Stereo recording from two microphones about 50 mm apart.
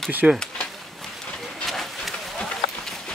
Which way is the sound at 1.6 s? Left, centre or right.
Centre.